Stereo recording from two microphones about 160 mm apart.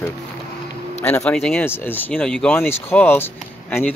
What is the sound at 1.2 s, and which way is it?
Speech, 5° left (ahead or behind).